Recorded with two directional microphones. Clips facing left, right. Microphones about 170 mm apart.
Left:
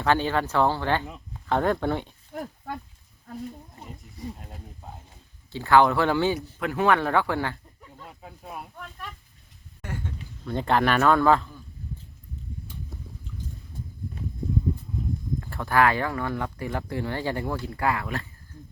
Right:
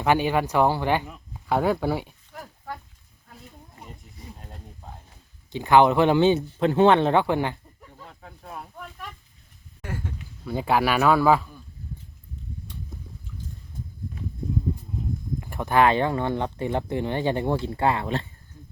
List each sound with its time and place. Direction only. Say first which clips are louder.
0.0 s a man's voice: right 2 dB; 15° right (ahead or behind)
4.4 s a sound: left 1 dB; centre (ahead or behind)
5.5 s speech: right 2 dB; 20° right (ahead or behind)
8.0 s speech: left 1 dB; 10° left (ahead or behind)
9.8 s a man's voice: right 1 dB; 5° right (ahead or behind)
15.4 s speech: right 2 dB; 15° right (ahead or behind)